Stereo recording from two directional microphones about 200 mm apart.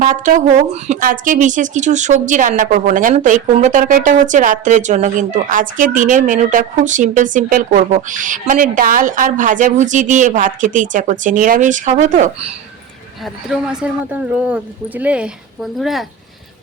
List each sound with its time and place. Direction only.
0.0 s a woman's voice: 40° right (ahead or behind)
13.2 s a woman's voice: 5° right (ahead or behind)